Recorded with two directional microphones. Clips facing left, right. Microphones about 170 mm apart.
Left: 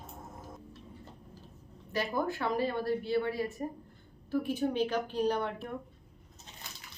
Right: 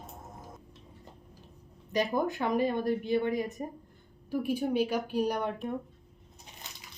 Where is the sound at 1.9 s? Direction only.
15° right (ahead or behind).